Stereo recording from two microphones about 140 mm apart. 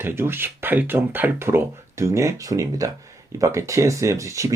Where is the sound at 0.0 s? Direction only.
15° right (ahead or behind).